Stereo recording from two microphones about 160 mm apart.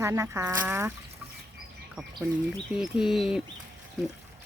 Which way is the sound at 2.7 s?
5° right (ahead or behind).